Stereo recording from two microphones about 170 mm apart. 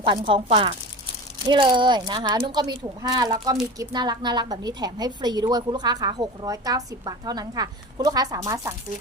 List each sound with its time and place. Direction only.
0.0 s a woman's voice: 30° right (ahead or behind)
1.5 s a woman's voice: 30° right (ahead or behind)